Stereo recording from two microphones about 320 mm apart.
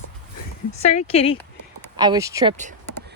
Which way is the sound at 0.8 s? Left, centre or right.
Left.